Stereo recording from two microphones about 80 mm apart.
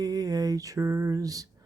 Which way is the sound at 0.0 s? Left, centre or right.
Right.